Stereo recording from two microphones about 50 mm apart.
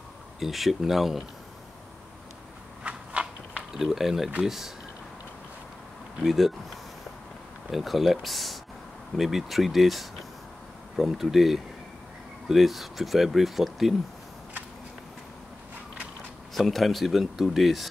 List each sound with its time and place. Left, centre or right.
0.4 s speech: centre
2.8 s walk: right
3.7 s speech: centre
6.1 s speech: centre
16.5 s speech: centre